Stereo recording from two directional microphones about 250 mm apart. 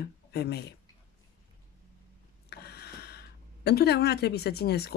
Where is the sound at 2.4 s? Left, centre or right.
Left.